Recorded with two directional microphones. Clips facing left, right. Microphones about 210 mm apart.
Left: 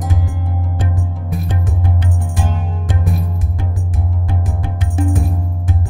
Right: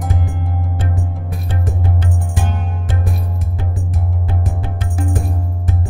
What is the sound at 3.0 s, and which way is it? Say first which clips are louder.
Music: left 5 dB; centre (ahead or behind).